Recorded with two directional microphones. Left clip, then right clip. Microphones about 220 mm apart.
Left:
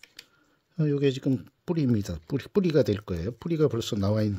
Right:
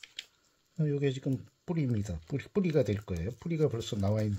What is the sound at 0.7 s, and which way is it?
Speech, 50° left (ahead or behind).